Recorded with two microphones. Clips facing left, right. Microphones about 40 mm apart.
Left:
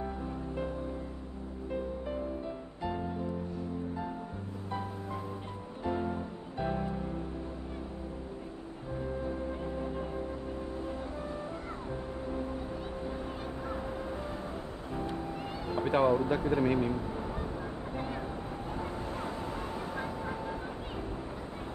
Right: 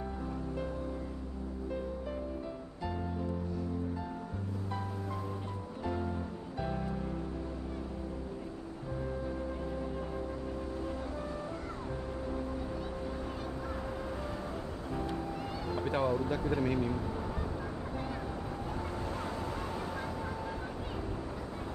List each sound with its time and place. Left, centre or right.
2.8 s music: left
5.9 s music: left
9.2 s music: left
15.7 s a sound: left